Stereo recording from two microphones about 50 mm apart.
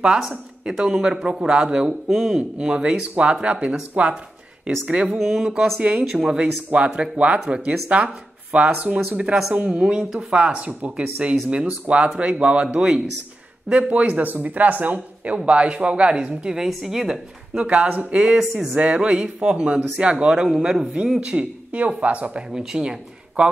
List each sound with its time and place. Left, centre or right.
0.3 s speech: centre
5.1 s speech: centre
5.8 s speech: right
6.0 s speech: centre
13.7 s speech: right
16.6 s speech: centre
17.6 s speech: right
18.4 s a man's voice: centre
18.8 s speech: right
22.5 s speech: centre